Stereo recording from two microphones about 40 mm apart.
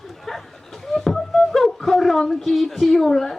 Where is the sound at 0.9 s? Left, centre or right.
Centre.